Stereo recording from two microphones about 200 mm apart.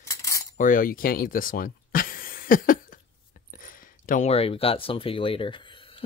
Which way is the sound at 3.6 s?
45° left (ahead or behind).